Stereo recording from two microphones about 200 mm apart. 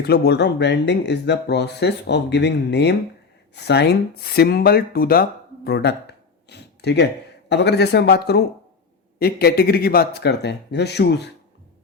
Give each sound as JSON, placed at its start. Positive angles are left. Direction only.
{"t": 0.0, "sound": "speech", "side_deg": 55}
{"t": 5.6, "sound": "a sound", "side_deg": 55}
{"t": 7.5, "sound": "speech", "side_deg": 55}